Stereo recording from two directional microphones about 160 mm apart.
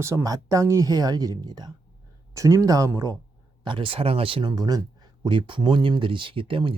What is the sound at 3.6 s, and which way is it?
Speech, 30° right (ahead or behind).